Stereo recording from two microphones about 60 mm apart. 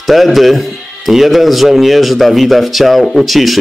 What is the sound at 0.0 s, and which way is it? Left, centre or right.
A man's voice, centre.